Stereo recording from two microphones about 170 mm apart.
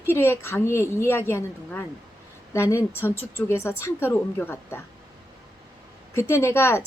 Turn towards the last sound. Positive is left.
turn(degrees=15)  # may be behind; listen again after turning